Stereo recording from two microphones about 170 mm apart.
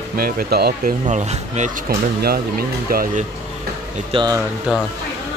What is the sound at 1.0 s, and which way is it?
Speech, 40° right (ahead or behind).